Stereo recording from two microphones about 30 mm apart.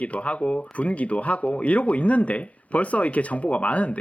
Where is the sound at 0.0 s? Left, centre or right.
Left.